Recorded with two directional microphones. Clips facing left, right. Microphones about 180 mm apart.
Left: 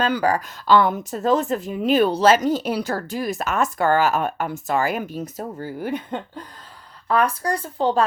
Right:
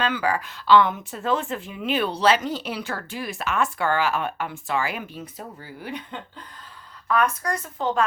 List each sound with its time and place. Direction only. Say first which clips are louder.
0.0 s speech: left 4 dB; 40° left (ahead or behind)
7.1 s speech: left 3 dB; 30° left (ahead or behind)